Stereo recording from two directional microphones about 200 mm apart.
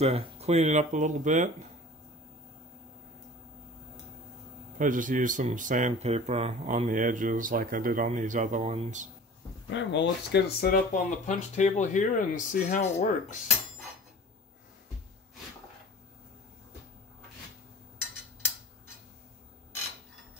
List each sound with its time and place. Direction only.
0.0 s speech: 30° right (ahead or behind)
4.7 s speech: 40° right (ahead or behind)
9.7 s speech: 65° left (ahead or behind)
11.2 s speech: 35° left (ahead or behind)